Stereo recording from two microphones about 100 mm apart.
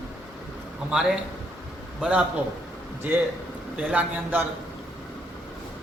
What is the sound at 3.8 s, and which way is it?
Speech, 15° right (ahead or behind).